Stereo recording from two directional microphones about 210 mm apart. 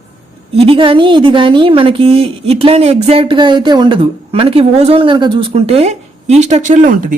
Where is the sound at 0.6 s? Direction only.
25° right (ahead or behind).